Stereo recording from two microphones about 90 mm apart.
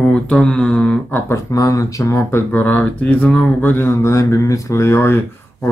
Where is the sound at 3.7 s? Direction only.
30° left (ahead or behind).